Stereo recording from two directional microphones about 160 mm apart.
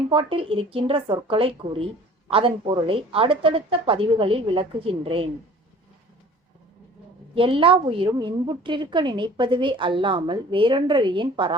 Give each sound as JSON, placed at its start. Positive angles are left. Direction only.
{"t": 0.1, "sound": "a woman's voice", "side_deg": -35}
{"t": 7.3, "sound": "a woman's voice", "side_deg": -35}